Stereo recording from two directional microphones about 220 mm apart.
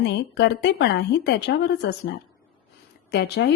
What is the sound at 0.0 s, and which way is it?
A woman's voice, 50° left (ahead or behind).